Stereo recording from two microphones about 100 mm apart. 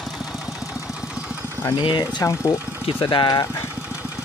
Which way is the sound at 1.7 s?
50° left (ahead or behind).